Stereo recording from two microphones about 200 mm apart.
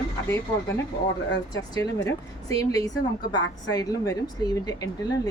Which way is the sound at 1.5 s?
20° left (ahead or behind).